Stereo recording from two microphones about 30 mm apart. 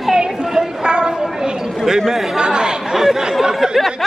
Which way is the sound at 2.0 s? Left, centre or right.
Centre.